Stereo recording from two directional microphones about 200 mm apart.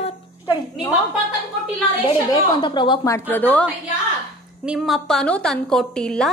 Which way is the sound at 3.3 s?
10° left (ahead or behind).